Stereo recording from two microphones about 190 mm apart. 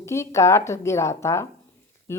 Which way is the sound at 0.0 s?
15° left (ahead or behind).